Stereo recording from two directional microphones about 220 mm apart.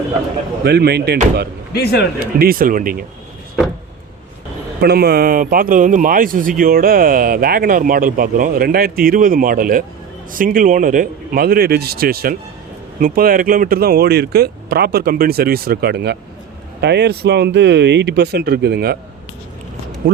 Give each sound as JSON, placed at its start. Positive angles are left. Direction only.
{"t": 0.6, "sound": "speech", "side_deg": -45}
{"t": 1.7, "sound": "speech", "side_deg": 45}
{"t": 2.4, "sound": "speech", "side_deg": -40}
{"t": 4.8, "sound": "speech", "side_deg": -45}